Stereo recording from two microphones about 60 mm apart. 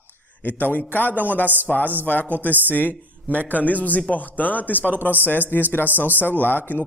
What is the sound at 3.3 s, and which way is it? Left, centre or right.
Speech, right.